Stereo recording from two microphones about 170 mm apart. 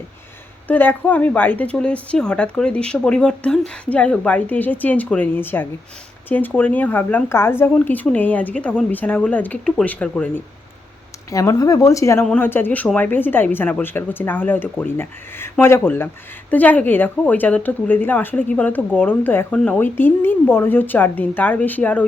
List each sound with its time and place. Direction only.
0.7 s speech: 10° left (ahead or behind)
11.3 s speech: 20° left (ahead or behind)